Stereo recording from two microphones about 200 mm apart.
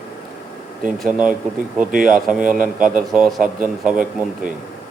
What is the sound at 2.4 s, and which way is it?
Speech, 45° right (ahead or behind).